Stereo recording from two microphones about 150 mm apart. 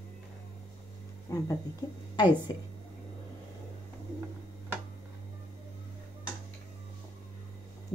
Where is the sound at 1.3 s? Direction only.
20° left (ahead or behind).